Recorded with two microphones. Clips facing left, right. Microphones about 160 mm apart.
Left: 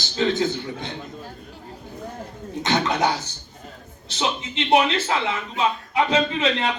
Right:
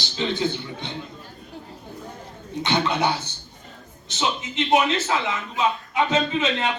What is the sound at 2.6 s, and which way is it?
A man's voice, 40° left (ahead or behind).